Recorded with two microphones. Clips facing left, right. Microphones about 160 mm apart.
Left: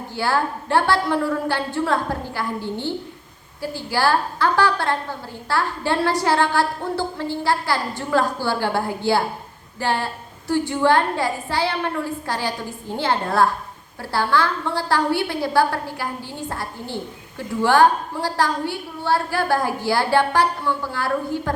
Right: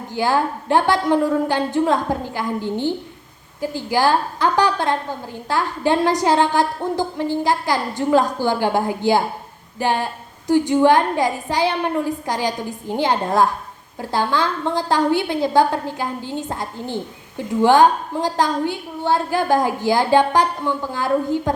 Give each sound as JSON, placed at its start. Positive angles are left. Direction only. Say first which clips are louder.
{"t": 0.1, "sound": "a woman's voice", "louder": "right 3 dB", "side_deg": -15}